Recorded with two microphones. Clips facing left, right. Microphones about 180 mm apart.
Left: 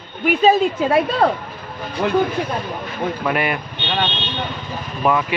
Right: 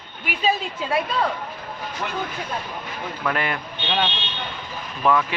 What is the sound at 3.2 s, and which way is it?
Speech, 15° left (ahead or behind).